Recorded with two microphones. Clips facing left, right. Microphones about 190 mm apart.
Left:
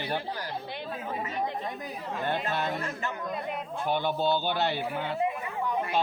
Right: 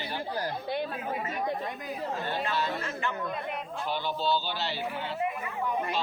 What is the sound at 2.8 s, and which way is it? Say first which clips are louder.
Speech: even; 40° left (ahead or behind).